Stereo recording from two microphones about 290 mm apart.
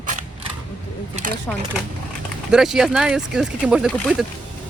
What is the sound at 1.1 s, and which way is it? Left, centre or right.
Speech, right.